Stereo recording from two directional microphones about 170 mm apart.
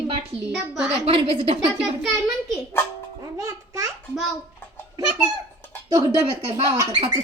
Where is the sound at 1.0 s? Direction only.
35° right (ahead or behind).